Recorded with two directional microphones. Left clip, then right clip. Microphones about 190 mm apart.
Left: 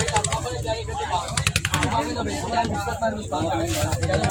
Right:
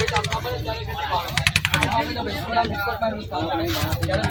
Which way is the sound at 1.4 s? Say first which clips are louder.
Right 3 dB; 50° right (ahead or behind).